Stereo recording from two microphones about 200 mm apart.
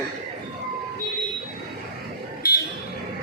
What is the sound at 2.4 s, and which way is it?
Buzzer, 50° left (ahead or behind).